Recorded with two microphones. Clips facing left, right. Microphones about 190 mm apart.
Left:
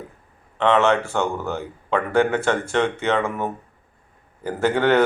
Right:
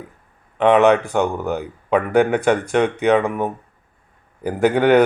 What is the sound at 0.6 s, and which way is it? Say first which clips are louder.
Speech: right 5 dB; 15° right (ahead or behind).